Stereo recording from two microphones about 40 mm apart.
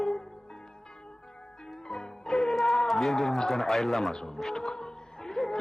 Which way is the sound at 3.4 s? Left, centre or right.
Centre.